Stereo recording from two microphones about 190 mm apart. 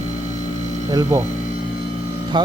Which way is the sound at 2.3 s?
25° right (ahead or behind).